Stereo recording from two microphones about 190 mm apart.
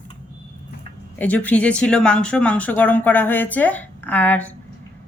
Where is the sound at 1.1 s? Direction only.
10° left (ahead or behind).